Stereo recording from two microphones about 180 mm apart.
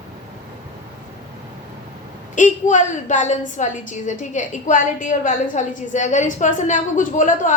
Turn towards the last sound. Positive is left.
turn(degrees=45)  # may be behind; listen again after turning